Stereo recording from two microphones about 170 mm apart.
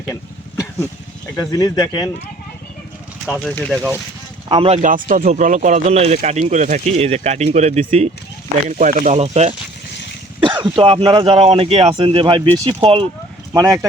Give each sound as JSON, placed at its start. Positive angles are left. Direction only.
{"t": 0.1, "sound": "a sound", "side_deg": 20}
{"t": 1.5, "sound": "speech", "side_deg": 20}
{"t": 3.5, "sound": "speech", "side_deg": 5}
{"t": 4.4, "sound": "a man's voice", "side_deg": -30}
{"t": 4.8, "sound": "speech", "side_deg": -50}
{"t": 8.7, "sound": "speech", "side_deg": -50}
{"t": 9.1, "sound": "speech", "side_deg": -40}
{"t": 13.5, "sound": "speech", "side_deg": -15}